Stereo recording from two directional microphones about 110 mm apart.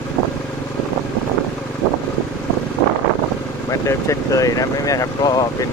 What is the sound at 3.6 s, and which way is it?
Speech, 30° left (ahead or behind).